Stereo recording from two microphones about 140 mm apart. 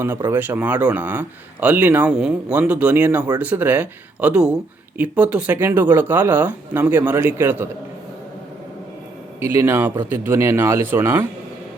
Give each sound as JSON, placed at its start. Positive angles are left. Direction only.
{"t": 0.3, "sound": "speech", "side_deg": -15}
{"t": 9.5, "sound": "speech", "side_deg": -15}